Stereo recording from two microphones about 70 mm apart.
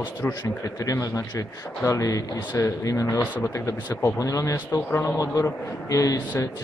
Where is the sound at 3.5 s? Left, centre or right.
Left.